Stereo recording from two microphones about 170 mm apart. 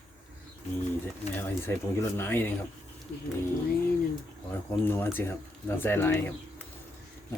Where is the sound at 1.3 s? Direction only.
15° left (ahead or behind).